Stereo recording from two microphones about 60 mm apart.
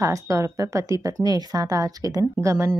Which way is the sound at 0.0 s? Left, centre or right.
Right.